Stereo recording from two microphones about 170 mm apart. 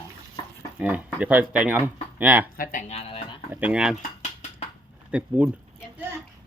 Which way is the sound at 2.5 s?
55° left (ahead or behind).